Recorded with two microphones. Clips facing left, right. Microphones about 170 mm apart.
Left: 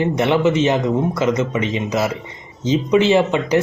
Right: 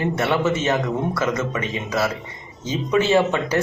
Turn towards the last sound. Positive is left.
turn(degrees=15)  # may be behind; listen again after turning